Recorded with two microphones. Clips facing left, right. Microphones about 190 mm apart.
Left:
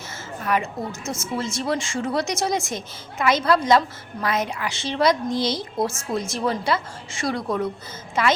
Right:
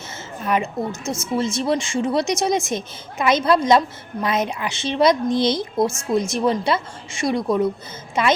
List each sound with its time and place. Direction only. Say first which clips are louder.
0.4 s speech: right 3 dB; 20° right (ahead or behind)